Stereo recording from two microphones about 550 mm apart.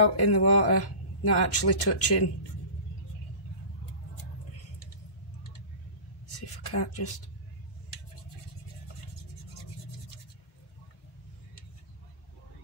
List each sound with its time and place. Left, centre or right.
0.1 s speech: left
6.7 s speech: left